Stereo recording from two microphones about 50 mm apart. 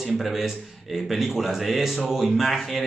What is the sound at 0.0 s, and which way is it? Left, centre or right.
Speech, centre.